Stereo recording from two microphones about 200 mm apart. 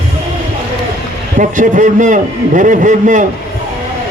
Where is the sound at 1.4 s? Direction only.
40° right (ahead or behind).